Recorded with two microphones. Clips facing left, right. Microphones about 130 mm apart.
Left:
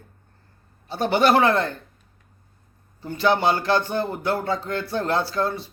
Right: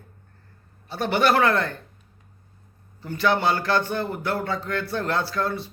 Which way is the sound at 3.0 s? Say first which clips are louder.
Left 2 dB; 30° left (ahead or behind).